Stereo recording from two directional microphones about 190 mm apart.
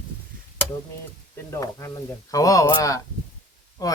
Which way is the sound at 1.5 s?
15° left (ahead or behind).